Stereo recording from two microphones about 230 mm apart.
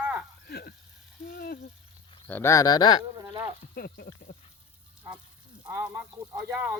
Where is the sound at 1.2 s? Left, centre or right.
Left.